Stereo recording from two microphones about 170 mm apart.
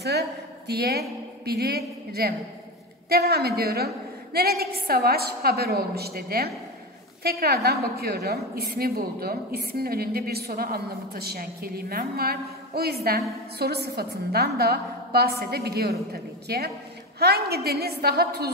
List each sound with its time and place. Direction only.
0.7 s a woman's voice: 70° right (ahead or behind)